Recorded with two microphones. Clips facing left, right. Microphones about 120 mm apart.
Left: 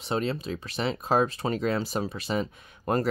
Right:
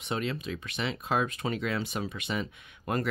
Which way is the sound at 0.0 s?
35° left (ahead or behind).